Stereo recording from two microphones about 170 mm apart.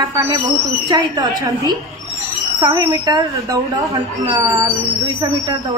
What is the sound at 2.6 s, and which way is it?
Speech, 20° right (ahead or behind).